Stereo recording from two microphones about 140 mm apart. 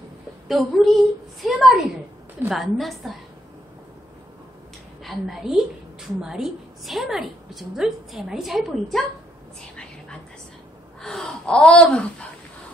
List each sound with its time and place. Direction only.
0.5 s a woman's voice: centre (ahead or behind)
5.0 s a woman's voice: centre (ahead or behind)
11.0 s speech: 5° left (ahead or behind)